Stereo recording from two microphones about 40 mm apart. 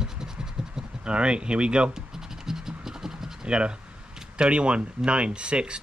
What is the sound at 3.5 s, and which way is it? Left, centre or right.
Speech, right.